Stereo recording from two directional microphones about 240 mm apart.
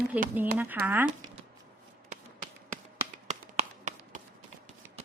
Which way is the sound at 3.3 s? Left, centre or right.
Right.